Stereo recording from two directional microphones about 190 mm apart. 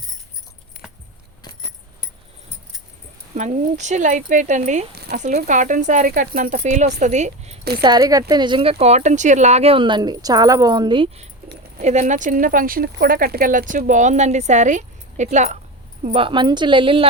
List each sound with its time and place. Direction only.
3.3 s speech: 40° right (ahead or behind)
7.8 s speech: 20° right (ahead or behind)
11.8 s speech: 40° right (ahead or behind)
16.0 s speech: 30° right (ahead or behind)